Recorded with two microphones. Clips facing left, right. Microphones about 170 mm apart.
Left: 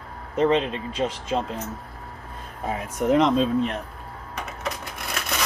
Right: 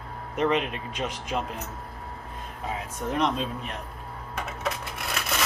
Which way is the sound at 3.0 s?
90° left.